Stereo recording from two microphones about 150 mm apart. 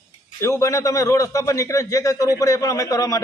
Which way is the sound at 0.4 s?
20° left (ahead or behind).